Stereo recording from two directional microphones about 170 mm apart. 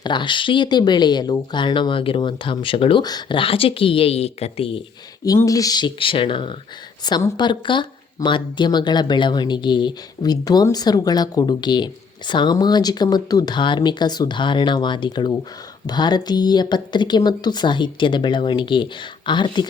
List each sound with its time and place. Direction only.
0.0 s speech: 25° left (ahead or behind)
5.2 s speech: 20° left (ahead or behind)